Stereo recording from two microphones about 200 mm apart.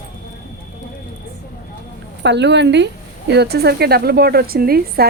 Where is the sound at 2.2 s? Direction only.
60° right (ahead or behind).